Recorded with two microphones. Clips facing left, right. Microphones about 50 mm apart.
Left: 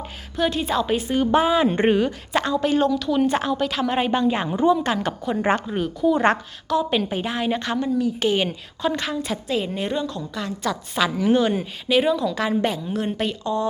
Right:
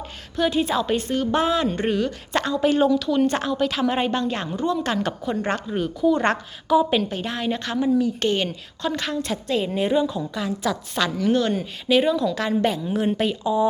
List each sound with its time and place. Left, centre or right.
0.3 s a woman's voice: centre
0.9 s a woman's voice: centre
1.6 s speech: left
2.0 s a woman's voice: centre
5.4 s a woman's voice: centre
5.7 s a woman's voice: centre
6.7 s a woman's voice: centre
7.0 s a woman's voice: centre